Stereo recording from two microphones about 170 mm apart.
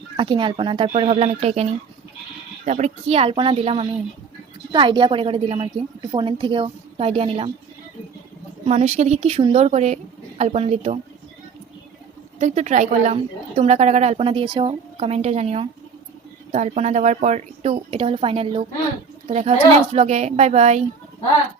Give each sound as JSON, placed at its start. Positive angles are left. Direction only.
{"t": 0.2, "sound": "speech", "side_deg": -30}
{"t": 2.6, "sound": "a woman's voice", "side_deg": -45}
{"t": 8.6, "sound": "speech", "side_deg": -40}
{"t": 12.4, "sound": "a woman's voice", "side_deg": -45}